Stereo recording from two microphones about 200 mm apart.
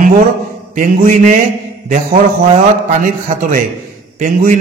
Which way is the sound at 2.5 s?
35° right (ahead or behind).